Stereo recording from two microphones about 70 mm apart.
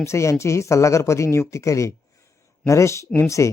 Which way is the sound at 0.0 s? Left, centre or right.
Left.